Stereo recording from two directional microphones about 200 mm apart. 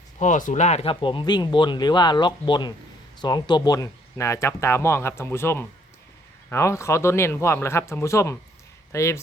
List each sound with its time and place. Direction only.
0.2 s speech: 40° left (ahead or behind); by 9.2 s 15° left (ahead or behind)